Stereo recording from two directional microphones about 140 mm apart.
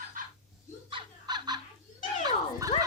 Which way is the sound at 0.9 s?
35° right (ahead or behind).